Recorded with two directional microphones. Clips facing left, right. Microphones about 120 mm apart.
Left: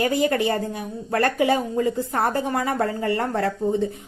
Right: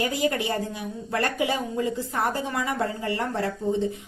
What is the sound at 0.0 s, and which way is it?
Speech, 60° left (ahead or behind).